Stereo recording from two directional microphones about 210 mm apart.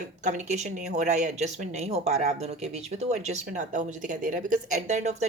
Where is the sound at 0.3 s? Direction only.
35° right (ahead or behind).